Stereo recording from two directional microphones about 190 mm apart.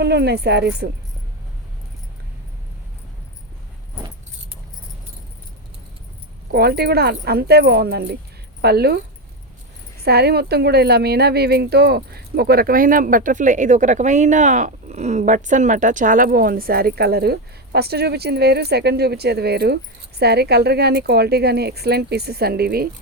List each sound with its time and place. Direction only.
0.0 s a woman's voice: 60° right (ahead or behind)
6.5 s a woman's voice: 55° right (ahead or behind)